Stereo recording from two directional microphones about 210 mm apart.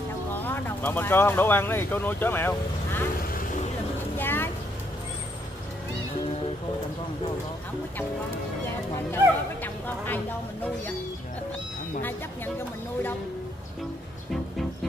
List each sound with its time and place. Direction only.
0.3 s speech: 10° left (ahead or behind)
3.3 s vehicle: 40° left (ahead or behind)
4.2 s vehicle: 10° left (ahead or behind)
9.1 s speech: 10° left (ahead or behind)